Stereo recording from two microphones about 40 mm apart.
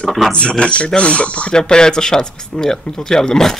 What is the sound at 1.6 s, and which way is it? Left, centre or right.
Speech, centre.